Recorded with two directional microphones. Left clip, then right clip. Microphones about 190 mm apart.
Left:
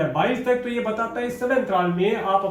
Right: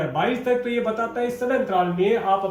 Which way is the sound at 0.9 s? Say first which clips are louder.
Right 1 dB; 15° right (ahead or behind).